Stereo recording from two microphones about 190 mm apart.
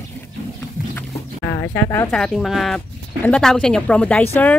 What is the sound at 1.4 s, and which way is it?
Speech, 15° left (ahead or behind).